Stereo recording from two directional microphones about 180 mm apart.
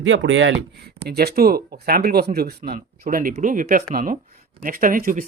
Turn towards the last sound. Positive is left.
turn(degrees=-50)  # may be behind; listen again after turning